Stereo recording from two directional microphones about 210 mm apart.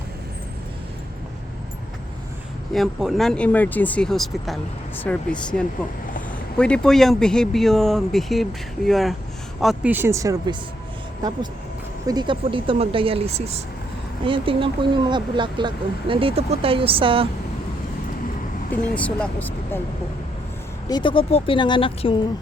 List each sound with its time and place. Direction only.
2.7 s speech: centre (ahead or behind); by 10.6 s 20° right (ahead or behind)
12.0 s speech: 20° right (ahead or behind)
18.9 s speech: 5° left (ahead or behind)
20.8 s speech: 20° left (ahead or behind)